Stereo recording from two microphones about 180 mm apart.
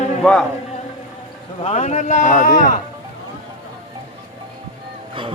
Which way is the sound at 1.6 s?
40° left (ahead or behind).